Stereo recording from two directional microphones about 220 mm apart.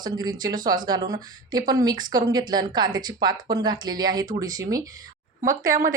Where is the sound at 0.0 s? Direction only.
20° right (ahead or behind).